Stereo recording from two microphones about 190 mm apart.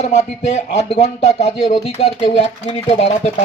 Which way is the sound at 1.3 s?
35° left (ahead or behind).